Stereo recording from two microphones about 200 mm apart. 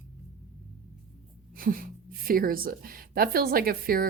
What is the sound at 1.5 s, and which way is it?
A woman's voice, 45° right (ahead or behind).